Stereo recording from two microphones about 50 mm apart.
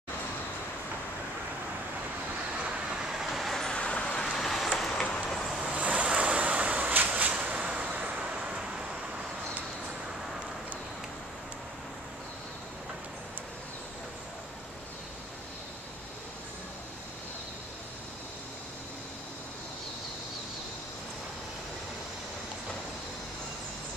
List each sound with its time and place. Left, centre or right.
3.1 s vehicle: centre
3.7 s vehicle: left
4.2 s vehicle: centre
5.6 s a sound: right